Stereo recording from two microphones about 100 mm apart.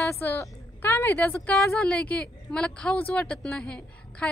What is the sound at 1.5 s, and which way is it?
A woman's voice, 5° left (ahead or behind).